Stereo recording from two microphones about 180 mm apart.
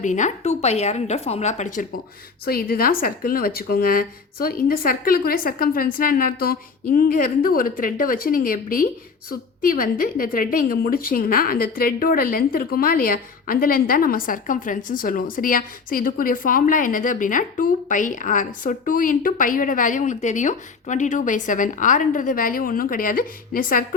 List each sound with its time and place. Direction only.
0.0 s a woman's voice: 45° left (ahead or behind)
2.4 s a woman's voice: 55° left (ahead or behind)